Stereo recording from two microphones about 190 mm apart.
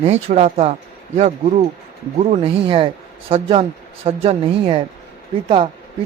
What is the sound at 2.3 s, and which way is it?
Speech, 30° right (ahead or behind).